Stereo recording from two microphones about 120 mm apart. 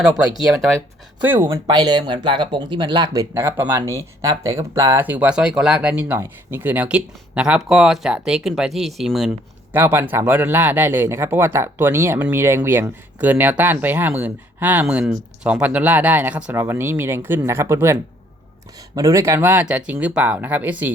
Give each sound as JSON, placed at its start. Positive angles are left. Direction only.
{"t": 1.2, "sound": "speech", "side_deg": -15}
{"t": 1.6, "sound": "speech", "side_deg": -35}
{"t": 3.1, "sound": "speech", "side_deg": -25}
{"t": 5.0, "sound": "speech", "side_deg": -15}
{"t": 9.7, "sound": "speech", "side_deg": -20}
{"t": 18.9, "sound": "speech", "side_deg": -25}